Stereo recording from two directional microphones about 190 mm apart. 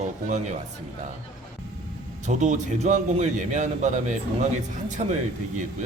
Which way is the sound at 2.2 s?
40° right (ahead or behind).